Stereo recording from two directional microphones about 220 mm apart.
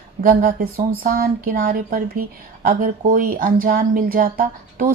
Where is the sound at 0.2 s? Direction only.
40° right (ahead or behind).